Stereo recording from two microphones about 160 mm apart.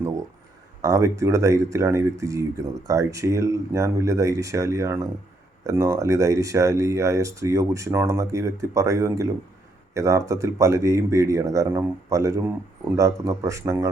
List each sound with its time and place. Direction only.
0.8 s speech: 20° right (ahead or behind)